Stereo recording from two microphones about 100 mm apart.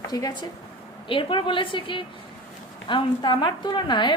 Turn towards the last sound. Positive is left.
turn(degrees=50)  # may be behind; listen again after turning